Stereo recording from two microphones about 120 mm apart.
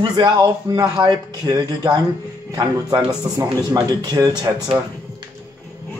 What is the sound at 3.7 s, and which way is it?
Speech, 30° right (ahead or behind).